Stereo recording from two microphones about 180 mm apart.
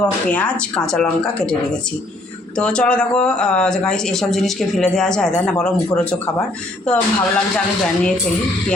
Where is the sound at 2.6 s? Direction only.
5° left (ahead or behind).